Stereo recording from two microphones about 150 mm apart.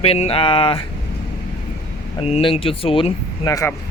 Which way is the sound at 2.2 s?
40° left (ahead or behind).